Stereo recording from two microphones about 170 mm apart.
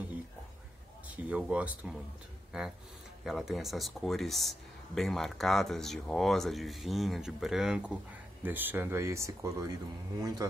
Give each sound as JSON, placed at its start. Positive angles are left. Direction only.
{"t": 1.1, "sound": "speech", "side_deg": -10}
{"t": 3.3, "sound": "a man's voice", "side_deg": 0}